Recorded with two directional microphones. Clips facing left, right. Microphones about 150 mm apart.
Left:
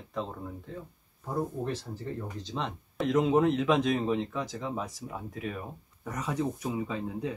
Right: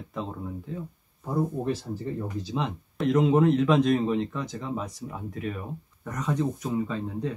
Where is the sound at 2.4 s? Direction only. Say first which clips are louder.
Right 5 dB; 5° right (ahead or behind).